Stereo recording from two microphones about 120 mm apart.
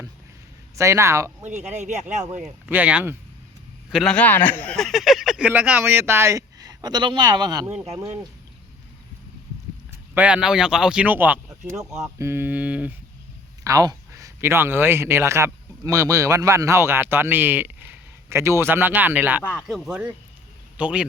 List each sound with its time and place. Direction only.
0.8 s speech: 25° right (ahead or behind)
1.5 s speech: 80° right
2.3 s speech: 15° right (ahead or behind)
3.8 s speech: 5° left (ahead or behind)
5.5 s speech: 15° right (ahead or behind); by 7.7 s 35° right (ahead or behind)
10.2 s speech: 10° right (ahead or behind)
13.7 s a man's voice: 30° right (ahead or behind)
19.4 s speech: 15° left (ahead or behind)
19.6 s a man's voice: centre (ahead or behind)